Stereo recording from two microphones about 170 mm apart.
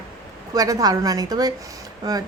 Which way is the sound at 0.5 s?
20° right (ahead or behind).